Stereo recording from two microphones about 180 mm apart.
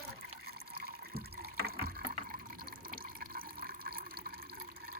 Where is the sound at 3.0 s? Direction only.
55° right (ahead or behind).